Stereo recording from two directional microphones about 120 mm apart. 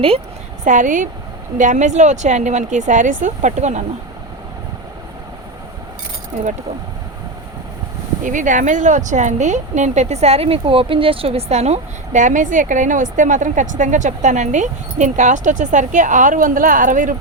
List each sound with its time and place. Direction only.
0.6 s speech: 90° right; by 3.8 s 75° right (ahead or behind)
6.3 s speech: 90° right
8.2 s speech: 90° right